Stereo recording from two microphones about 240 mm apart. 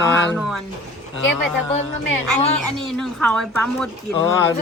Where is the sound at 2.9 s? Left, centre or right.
Centre.